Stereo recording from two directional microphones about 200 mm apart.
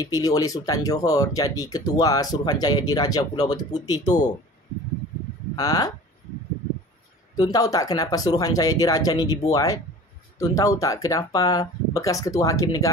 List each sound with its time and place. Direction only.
0.0 s speech: 20° left (ahead or behind)
5.6 s speech: 20° left (ahead or behind)
7.3 s speech: 20° left (ahead or behind)